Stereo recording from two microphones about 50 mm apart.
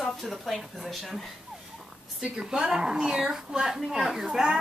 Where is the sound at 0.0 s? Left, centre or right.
Centre.